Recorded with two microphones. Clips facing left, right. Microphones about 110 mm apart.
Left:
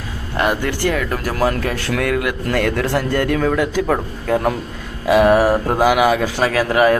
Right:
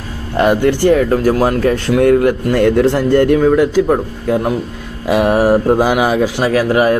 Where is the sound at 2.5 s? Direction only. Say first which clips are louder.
Right 6 dB; 25° right (ahead or behind).